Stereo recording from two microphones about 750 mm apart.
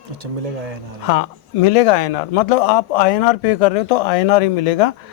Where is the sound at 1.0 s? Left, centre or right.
Left.